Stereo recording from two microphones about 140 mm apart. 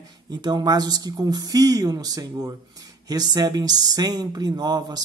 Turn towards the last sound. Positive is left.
turn(degrees=-30)  # may be behind; listen again after turning